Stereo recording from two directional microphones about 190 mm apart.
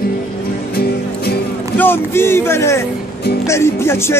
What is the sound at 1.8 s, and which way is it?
Speech, 10° left (ahead or behind).